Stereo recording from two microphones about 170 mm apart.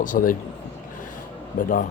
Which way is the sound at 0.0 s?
50° left (ahead or behind).